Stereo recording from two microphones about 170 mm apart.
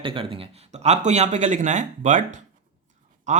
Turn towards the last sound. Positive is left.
turn(degrees=-45)  # may be behind; listen again after turning